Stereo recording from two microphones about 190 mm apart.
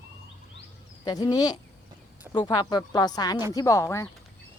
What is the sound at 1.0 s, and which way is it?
A woman's voice, 20° left (ahead or behind).